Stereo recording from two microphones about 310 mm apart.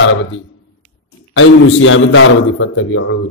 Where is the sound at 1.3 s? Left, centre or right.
Left.